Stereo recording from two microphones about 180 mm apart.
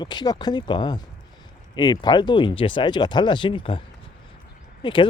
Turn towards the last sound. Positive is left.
turn(degrees=25)  # may be behind; listen again after turning